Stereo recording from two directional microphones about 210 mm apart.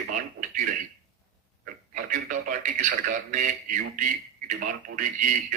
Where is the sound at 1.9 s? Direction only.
40° right (ahead or behind).